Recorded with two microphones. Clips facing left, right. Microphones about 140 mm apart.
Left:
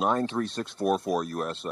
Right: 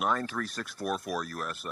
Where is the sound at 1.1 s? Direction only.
45° left (ahead or behind).